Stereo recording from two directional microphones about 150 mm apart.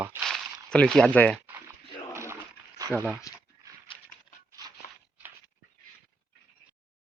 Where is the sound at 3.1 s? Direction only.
25° left (ahead or behind).